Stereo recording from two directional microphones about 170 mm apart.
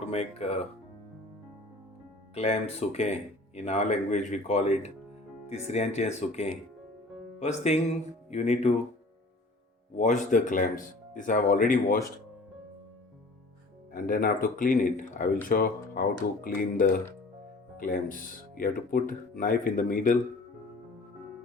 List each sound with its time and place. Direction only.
0.0 s speech: 40° left (ahead or behind)
2.3 s speech: 35° left (ahead or behind)
10.0 s speech: 45° left (ahead or behind)
13.9 s speech: 55° left (ahead or behind)